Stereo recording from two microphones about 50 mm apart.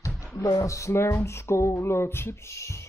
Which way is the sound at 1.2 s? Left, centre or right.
Left.